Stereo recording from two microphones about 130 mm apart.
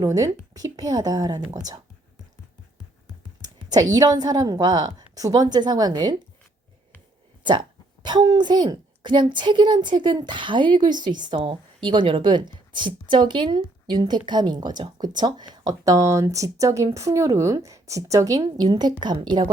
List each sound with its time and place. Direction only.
0.0 s a woman's voice: 30° right (ahead or behind)
3.4 s computer keyboard: 30° right (ahead or behind)
3.9 s a woman's voice: 30° right (ahead or behind)
7.4 s a woman's voice: 35° right (ahead or behind)